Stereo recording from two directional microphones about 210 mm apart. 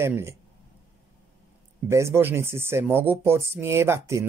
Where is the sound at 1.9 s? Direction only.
15° right (ahead or behind).